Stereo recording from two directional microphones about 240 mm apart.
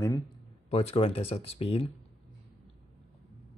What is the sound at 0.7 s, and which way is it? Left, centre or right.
Speech, left.